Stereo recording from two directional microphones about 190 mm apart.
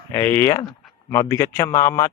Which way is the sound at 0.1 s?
10° left (ahead or behind).